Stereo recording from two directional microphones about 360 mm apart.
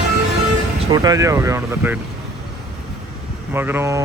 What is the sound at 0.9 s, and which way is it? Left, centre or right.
Speech, centre.